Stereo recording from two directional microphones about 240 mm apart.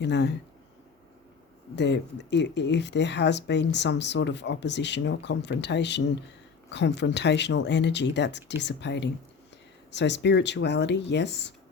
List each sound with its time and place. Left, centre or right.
0.0 s speech: left
1.7 s speech: left